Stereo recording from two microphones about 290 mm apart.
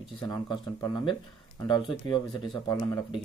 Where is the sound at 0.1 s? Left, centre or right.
Centre.